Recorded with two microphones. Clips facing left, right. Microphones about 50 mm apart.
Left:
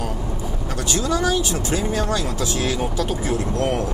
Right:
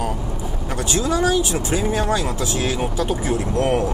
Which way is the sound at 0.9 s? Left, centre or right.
Centre.